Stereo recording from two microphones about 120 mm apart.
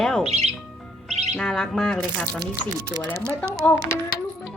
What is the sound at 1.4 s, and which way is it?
Speech, 5° left (ahead or behind).